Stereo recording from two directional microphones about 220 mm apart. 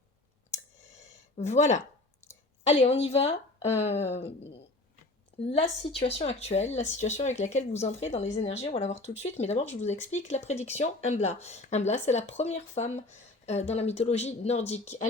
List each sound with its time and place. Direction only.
0.9 s a sound: 30° left (ahead or behind)
3.0 s speech: 25° left (ahead or behind)
5.5 s a woman's voice: 30° left (ahead or behind)